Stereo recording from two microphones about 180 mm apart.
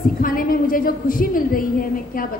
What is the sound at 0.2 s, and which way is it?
A woman's voice, 50° left (ahead or behind).